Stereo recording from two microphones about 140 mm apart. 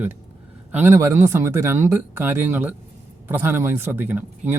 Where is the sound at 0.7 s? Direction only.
15° right (ahead or behind).